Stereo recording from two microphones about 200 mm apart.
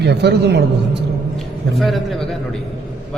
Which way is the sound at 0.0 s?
55° right (ahead or behind).